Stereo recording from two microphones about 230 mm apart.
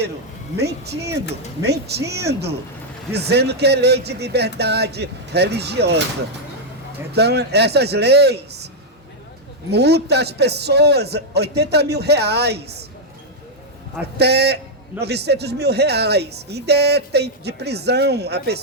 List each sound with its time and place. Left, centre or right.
0.5 s speech: right
7.1 s speech: right
9.7 s speech: right
14.2 s speech: right